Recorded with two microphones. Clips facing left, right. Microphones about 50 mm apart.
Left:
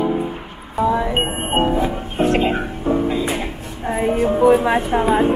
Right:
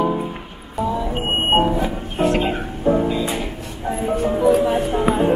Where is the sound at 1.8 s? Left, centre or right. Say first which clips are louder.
Left 1 dB; left.